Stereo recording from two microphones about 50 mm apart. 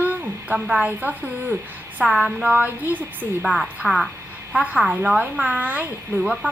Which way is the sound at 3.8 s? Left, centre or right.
Centre.